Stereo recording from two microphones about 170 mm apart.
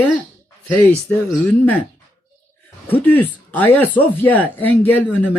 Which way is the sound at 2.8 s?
10° left (ahead or behind).